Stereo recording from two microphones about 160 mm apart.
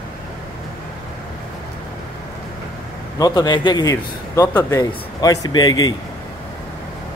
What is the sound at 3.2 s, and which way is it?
A man's voice, 25° left (ahead or behind).